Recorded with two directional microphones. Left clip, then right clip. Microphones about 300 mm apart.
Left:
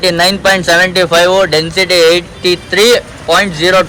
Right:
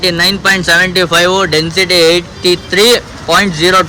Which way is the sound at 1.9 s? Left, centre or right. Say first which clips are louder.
Left 1 dB; centre.